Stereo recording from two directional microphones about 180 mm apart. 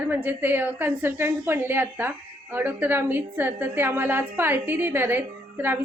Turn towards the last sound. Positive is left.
turn(degrees=-10)  # may be behind; listen again after turning